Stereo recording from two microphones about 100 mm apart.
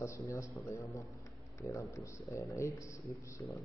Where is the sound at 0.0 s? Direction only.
30° left (ahead or behind).